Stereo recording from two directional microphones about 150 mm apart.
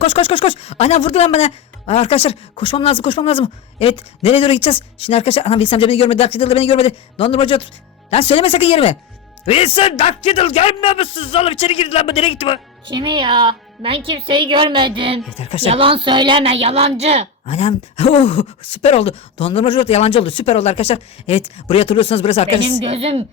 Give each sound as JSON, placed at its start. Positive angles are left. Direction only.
{"t": 0.0, "sound": "speech", "side_deg": 35}
{"t": 12.8, "sound": "speech", "side_deg": -30}
{"t": 15.4, "sound": "a woman's voice", "side_deg": 45}
{"t": 15.6, "sound": "speech", "side_deg": -35}
{"t": 17.4, "sound": "speech", "side_deg": 45}
{"t": 22.8, "sound": "speech", "side_deg": -40}